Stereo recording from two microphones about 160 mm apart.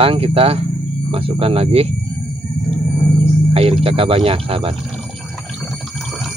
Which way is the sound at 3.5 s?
35° right (ahead or behind).